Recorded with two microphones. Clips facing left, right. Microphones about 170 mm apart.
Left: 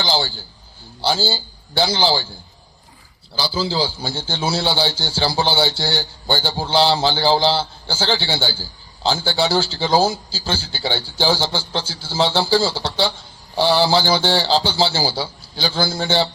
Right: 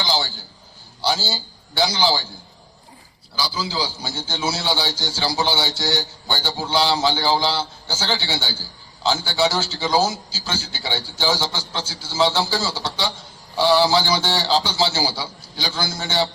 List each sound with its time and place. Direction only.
0.0 s a sound: 30° left (ahead or behind)
1.0 s a man's voice: 30° left (ahead or behind)
3.3 s a man's voice: 30° left (ahead or behind)